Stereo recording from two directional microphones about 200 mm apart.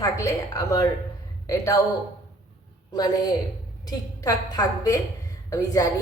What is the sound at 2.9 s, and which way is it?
A woman's voice, 20° left (ahead or behind).